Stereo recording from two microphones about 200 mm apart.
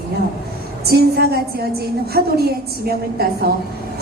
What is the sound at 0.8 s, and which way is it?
A woman's voice, 50° right (ahead or behind).